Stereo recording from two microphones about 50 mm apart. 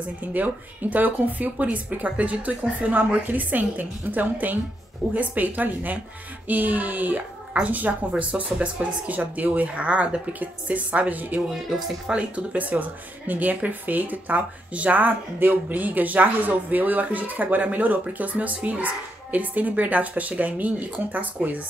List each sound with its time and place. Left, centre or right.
0.2 s speech: right
12.1 s speech: right